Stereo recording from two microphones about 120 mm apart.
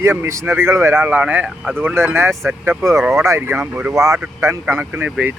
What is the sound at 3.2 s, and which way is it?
A man's voice, 20° right (ahead or behind).